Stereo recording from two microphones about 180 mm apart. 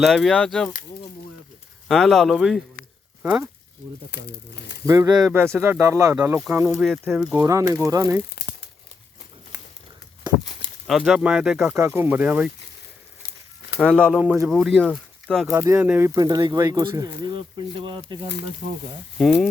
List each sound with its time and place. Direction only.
0.0 s speech: centre (ahead or behind)
1.9 s speech: centre (ahead or behind)
4.1 s speech: 70° left (ahead or behind)
4.9 s speech: 20° right (ahead or behind)
6.7 s speech: centre (ahead or behind)
7.4 s speech: 15° right (ahead or behind)
10.8 s speech: centre (ahead or behind)
13.7 s speech: 10° right (ahead or behind)
15.5 s speech: 15° right (ahead or behind)
19.2 s speech: 5° left (ahead or behind)